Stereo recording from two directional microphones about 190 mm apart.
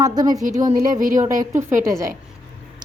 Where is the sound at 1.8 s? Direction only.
15° right (ahead or behind).